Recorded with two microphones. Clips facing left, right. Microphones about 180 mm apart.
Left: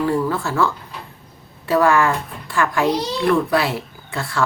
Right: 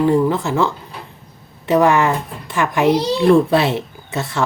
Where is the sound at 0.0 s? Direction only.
20° right (ahead or behind).